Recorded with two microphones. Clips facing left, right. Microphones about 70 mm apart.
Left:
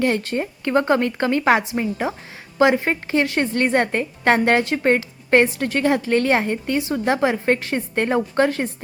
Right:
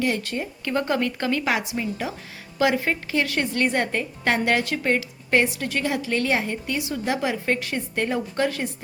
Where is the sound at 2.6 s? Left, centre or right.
Left.